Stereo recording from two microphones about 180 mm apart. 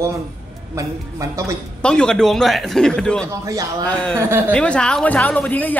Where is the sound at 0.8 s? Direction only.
20° right (ahead or behind).